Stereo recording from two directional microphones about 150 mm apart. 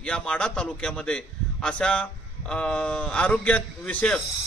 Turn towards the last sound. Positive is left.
turn(degrees=10)  # may be behind; listen again after turning